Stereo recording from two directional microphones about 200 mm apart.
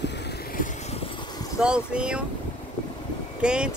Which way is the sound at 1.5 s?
5° right (ahead or behind).